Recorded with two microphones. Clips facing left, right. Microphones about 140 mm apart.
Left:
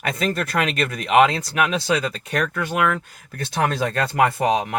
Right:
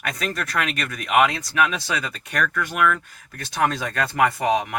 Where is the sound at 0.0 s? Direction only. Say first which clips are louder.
Left 4 dB; 30° left (ahead or behind).